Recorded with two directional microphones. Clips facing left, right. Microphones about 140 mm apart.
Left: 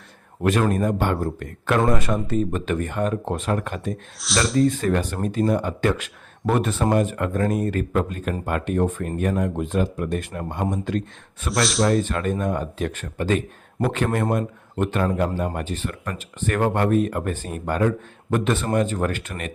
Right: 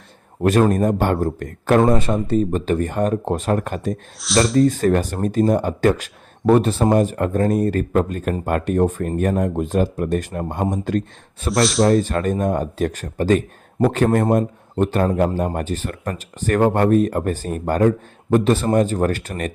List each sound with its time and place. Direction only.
0.7 s speech: 45° right (ahead or behind)
1.9 s speech: 30° right (ahead or behind)
4.2 s speech: centre (ahead or behind)
4.6 s speech: 40° right (ahead or behind)
11.5 s speech: centre (ahead or behind)
11.9 s speech: 30° right (ahead or behind)